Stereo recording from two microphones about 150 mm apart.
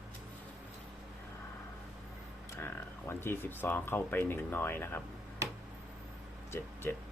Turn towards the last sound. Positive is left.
turn(degrees=15)  # may be behind; listen again after turning